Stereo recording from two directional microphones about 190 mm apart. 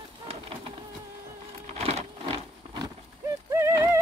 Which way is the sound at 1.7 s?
35° right (ahead or behind).